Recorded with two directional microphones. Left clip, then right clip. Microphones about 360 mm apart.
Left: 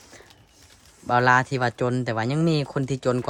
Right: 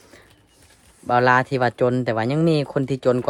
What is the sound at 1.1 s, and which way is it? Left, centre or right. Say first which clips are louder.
Speech: right 2 dB; centre.